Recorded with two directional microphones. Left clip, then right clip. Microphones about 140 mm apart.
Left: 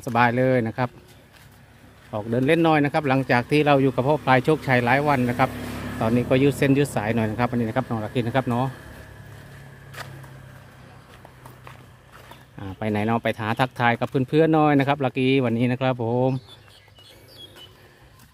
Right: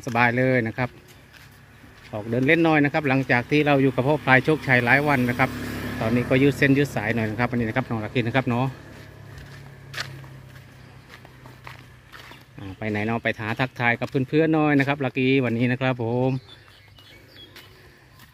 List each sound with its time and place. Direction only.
0.0 s speech: 15° left (ahead or behind)
2.2 s speech: 15° left (ahead or behind)
3.9 s speech: 5° left (ahead or behind)
12.7 s speech: 25° left (ahead or behind)